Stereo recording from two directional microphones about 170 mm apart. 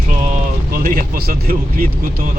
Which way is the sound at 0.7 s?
60° right (ahead or behind).